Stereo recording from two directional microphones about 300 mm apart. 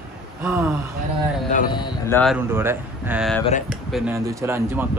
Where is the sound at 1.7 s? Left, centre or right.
Centre.